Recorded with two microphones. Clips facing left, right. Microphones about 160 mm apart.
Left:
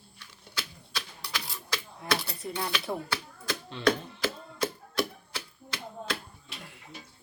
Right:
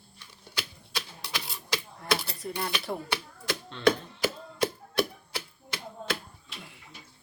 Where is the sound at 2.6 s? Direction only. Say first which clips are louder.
Left 1 dB; centre (ahead or behind).